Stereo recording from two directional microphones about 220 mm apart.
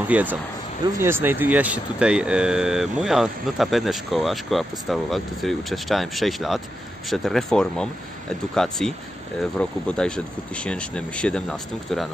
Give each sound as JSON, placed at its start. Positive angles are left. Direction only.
{"t": 0.1, "sound": "speech", "side_deg": -5}